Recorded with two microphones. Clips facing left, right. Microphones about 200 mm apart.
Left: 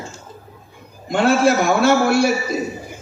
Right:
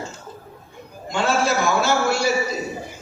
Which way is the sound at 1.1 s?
55° left (ahead or behind).